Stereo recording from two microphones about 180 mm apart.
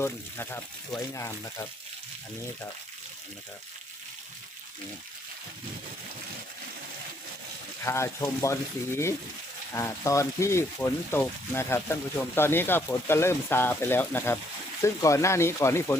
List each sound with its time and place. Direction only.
0.0 s speech: 10° left (ahead or behind)
7.9 s speech: 15° left (ahead or behind)
9.7 s speech: 15° left (ahead or behind)